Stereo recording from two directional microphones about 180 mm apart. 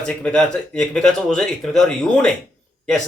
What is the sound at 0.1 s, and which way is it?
Speech, 5° left (ahead or behind).